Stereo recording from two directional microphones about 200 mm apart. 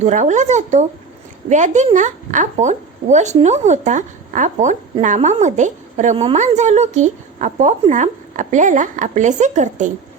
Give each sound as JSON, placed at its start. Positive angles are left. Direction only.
{"t": 0.0, "sound": "a woman's voice", "side_deg": -35}